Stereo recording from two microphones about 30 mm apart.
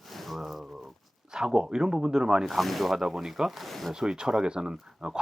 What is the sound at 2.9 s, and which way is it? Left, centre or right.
Speech, centre.